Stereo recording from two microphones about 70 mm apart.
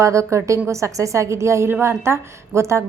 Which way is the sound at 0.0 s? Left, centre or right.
Right.